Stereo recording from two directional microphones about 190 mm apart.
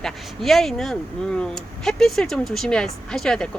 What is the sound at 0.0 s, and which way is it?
Speech, centre (ahead or behind).